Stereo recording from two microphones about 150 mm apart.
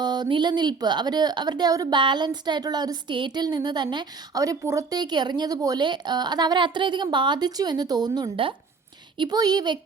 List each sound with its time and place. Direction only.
0.0 s a woman's voice: 30° right (ahead or behind)